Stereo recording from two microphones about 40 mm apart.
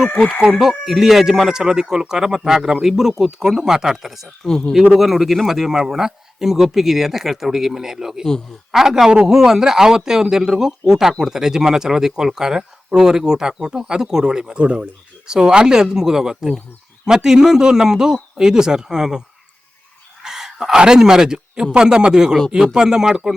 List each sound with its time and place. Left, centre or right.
0.2 s speech: centre
0.6 s speech: centre
4.4 s speech: centre
4.9 s speech: centre
20.2 s a man's voice: centre